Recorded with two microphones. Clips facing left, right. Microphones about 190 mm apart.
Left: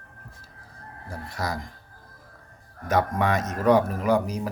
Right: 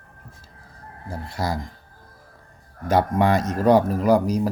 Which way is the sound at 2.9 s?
30° right (ahead or behind).